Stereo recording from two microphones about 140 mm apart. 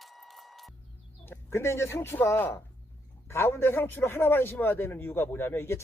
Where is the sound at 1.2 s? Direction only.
15° left (ahead or behind).